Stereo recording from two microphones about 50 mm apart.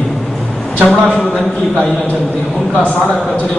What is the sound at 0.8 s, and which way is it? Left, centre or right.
Speech, left.